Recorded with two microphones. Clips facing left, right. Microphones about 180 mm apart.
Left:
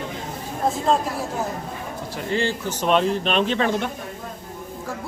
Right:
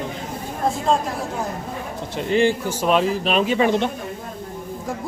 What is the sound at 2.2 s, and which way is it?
Speech, 20° right (ahead or behind).